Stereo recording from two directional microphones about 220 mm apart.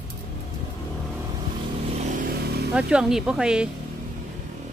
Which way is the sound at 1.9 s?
35° right (ahead or behind).